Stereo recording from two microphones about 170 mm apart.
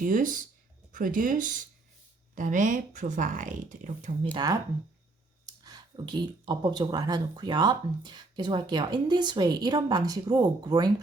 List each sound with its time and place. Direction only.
0.0 s speech: 50° right (ahead or behind)
5.6 s speech: 25° right (ahead or behind)